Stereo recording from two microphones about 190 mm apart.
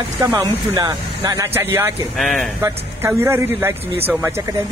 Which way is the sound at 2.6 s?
15° right (ahead or behind).